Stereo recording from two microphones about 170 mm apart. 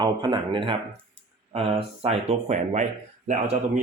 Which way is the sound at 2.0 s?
40° right (ahead or behind).